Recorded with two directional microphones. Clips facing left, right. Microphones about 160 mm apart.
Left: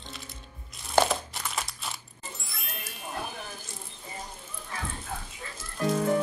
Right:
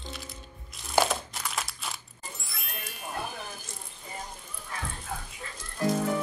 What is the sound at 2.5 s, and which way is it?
Music, centre (ahead or behind).